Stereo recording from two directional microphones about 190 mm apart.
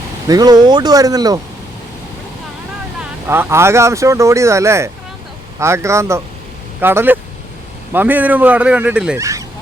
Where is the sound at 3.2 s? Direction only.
10° right (ahead or behind).